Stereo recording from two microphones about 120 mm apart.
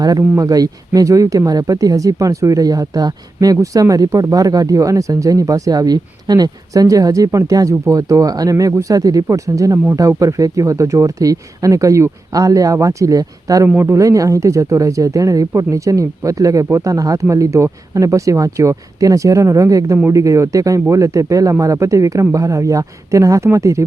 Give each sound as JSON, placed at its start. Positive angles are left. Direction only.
{"t": 0.0, "sound": "speech", "side_deg": -30}
{"t": 13.7, "sound": "speech", "side_deg": -20}